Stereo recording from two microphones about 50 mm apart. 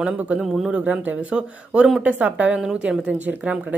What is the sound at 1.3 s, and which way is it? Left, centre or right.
A man's voice, right.